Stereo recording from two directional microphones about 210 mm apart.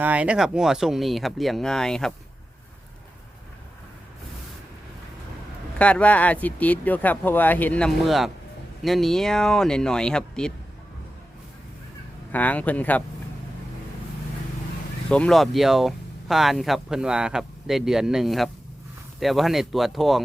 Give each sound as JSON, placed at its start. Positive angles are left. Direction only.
{"t": 0.0, "sound": "speech", "side_deg": -5}
{"t": 5.8, "sound": "speech", "side_deg": 5}
{"t": 12.3, "sound": "speech", "side_deg": 5}
{"t": 15.1, "sound": "speech", "side_deg": 5}